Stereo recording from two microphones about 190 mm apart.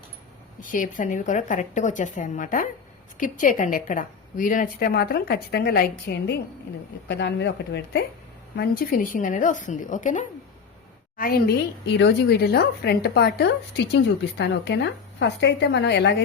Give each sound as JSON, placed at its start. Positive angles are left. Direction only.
{"t": 0.6, "sound": "a woman's voice", "side_deg": 45}
{"t": 8.5, "sound": "a woman's voice", "side_deg": 55}
{"t": 11.9, "sound": "a woman's voice", "side_deg": 65}